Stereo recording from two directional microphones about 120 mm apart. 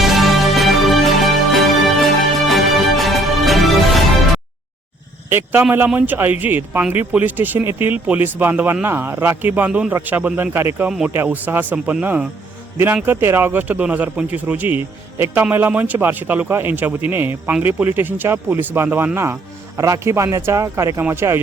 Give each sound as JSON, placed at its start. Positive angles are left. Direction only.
{"t": 0.0, "sound": "music", "side_deg": 0}
{"t": 5.3, "sound": "a man's voice", "side_deg": -20}